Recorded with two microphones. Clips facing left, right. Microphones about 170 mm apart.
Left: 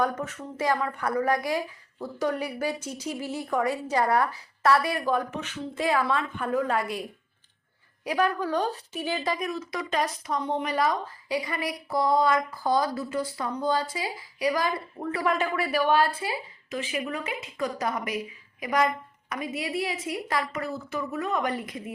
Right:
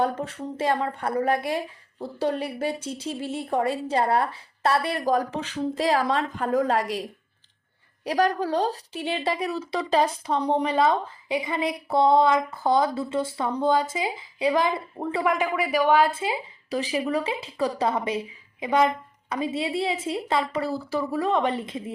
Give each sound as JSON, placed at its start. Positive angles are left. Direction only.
{"t": 0.0, "sound": "a woman's voice", "side_deg": -30}
{"t": 8.0, "sound": "a woman's voice", "side_deg": -35}
{"t": 15.2, "sound": "a woman's voice", "side_deg": -15}
{"t": 16.6, "sound": "a woman's voice", "side_deg": -35}